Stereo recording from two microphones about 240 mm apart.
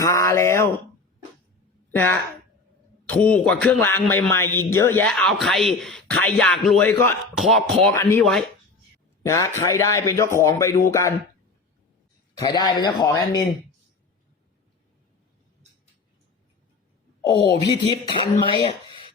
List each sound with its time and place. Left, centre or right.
0.0 s speech: centre
1.9 s a woman's voice: centre
9.2 s speech: centre
12.4 s speech: centre
17.2 s speech: centre